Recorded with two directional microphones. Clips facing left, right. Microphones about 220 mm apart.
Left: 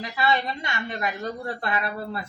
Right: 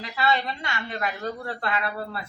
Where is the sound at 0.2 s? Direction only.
20° left (ahead or behind).